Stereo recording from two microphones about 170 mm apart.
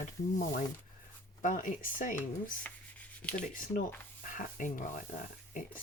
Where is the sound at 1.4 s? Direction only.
50° left (ahead or behind).